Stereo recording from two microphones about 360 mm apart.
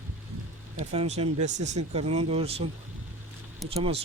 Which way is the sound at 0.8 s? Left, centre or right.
Centre.